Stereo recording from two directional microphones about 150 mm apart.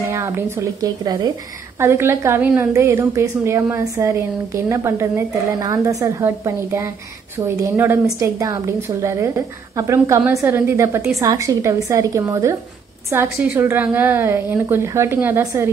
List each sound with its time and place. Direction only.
0.1 s a woman's voice: 15° right (ahead or behind)
1.8 s a woman's voice: 15° right (ahead or behind)